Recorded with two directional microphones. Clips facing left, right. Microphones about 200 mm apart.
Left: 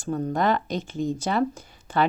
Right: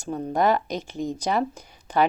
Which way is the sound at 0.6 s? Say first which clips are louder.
Left 2 dB; 40° right (ahead or behind).